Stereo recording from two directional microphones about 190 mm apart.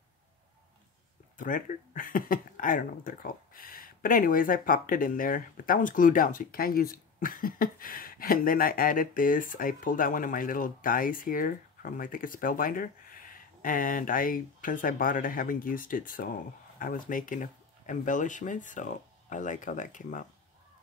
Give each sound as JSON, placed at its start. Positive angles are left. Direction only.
{"t": 1.4, "sound": "speech", "side_deg": 45}